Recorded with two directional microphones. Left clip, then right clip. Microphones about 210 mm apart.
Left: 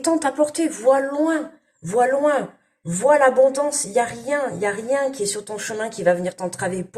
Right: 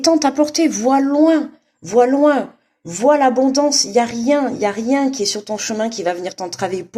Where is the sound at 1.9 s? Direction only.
40° right (ahead or behind).